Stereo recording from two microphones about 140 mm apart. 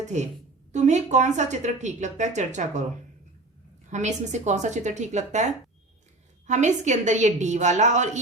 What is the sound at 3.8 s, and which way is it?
A woman's voice, 55° right (ahead or behind).